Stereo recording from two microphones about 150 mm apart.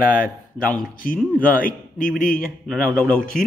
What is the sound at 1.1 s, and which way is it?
Speech, 5° left (ahead or behind).